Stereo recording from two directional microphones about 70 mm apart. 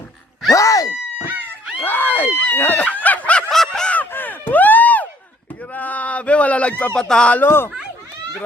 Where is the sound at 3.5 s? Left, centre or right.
Centre.